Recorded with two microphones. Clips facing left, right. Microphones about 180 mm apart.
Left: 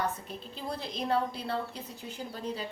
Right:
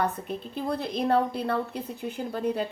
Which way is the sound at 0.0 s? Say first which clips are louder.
Right 6 dB; 55° right (ahead or behind).